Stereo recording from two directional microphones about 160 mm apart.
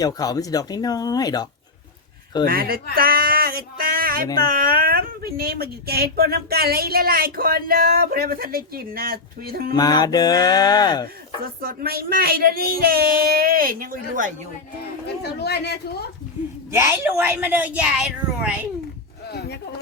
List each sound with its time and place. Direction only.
0.0 s speech: 20° left (ahead or behind)
2.5 s speech: 70° right (ahead or behind)
2.9 s a sound: 65° right (ahead or behind)
4.4 s speech: 65° right (ahead or behind)
9.7 s speech: 25° left (ahead or behind)
11.6 s speech: 70° right (ahead or behind)
15.0 s a woman's voice: 90° left
16.7 s a woman's voice: 15° right (ahead or behind)
19.3 s a sound: 90° left